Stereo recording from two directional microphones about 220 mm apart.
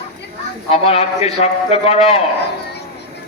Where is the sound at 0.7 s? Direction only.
25° left (ahead or behind).